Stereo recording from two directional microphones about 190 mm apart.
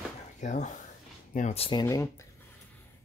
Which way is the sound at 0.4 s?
40° left (ahead or behind).